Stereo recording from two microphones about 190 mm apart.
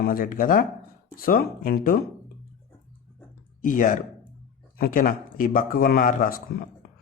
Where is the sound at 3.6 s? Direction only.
45° left (ahead or behind).